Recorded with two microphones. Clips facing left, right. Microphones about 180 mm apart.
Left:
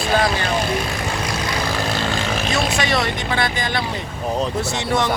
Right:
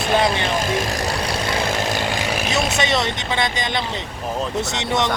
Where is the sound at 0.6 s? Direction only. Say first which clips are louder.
Right 1 dB; 40° right (ahead or behind).